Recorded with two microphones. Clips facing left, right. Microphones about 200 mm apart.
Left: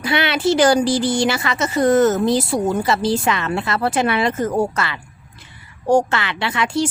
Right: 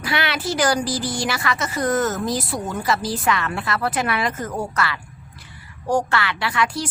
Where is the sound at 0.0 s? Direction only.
25° left (ahead or behind).